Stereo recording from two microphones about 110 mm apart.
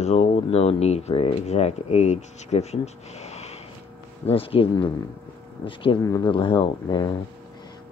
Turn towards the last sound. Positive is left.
turn(degrees=45)  # may be behind; listen again after turning